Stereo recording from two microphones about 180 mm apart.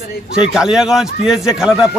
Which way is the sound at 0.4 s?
5° right (ahead or behind).